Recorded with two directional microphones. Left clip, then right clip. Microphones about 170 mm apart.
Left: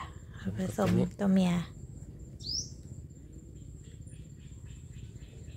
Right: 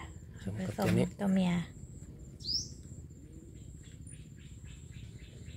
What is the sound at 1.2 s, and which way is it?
Speech, 30° left (ahead or behind).